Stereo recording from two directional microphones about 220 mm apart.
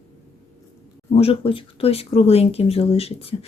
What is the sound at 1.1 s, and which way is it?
Speech, 25° left (ahead or behind).